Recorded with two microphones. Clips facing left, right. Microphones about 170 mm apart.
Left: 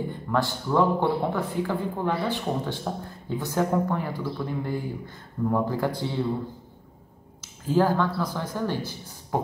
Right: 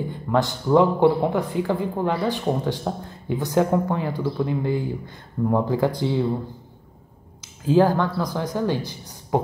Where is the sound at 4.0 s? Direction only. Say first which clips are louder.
Right 5 dB; 90° right.